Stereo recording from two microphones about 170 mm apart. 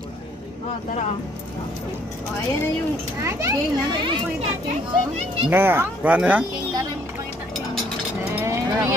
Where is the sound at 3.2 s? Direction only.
15° right (ahead or behind).